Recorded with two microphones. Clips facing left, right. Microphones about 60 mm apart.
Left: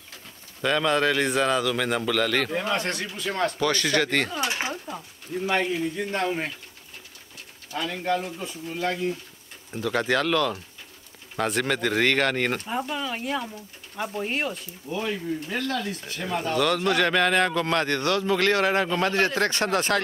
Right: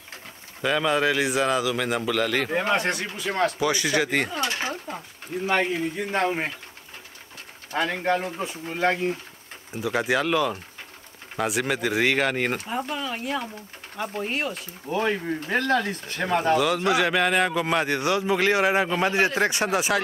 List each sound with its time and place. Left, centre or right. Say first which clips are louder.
0.6 s a man's voice: even; centre
2.5 s speech: right 3 dB; right
2.8 s speech: right 2 dB; centre
4.4 s speech: even; centre
5.5 s speech: right 1 dB; right
7.7 s speech: right 3 dB; right
9.8 s a man's voice: even; centre
15.0 s speech: right 4 dB; right
16.5 s speech: right 1 dB; centre